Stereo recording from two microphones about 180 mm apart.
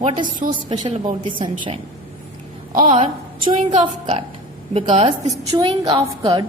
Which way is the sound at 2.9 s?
30° right (ahead or behind).